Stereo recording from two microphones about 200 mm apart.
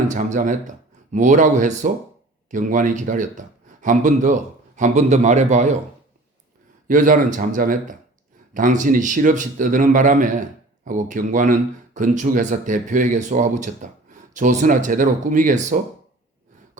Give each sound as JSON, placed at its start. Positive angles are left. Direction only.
{"t": 0.1, "sound": "a man's voice", "side_deg": -40}
{"t": 6.8, "sound": "speech", "side_deg": -40}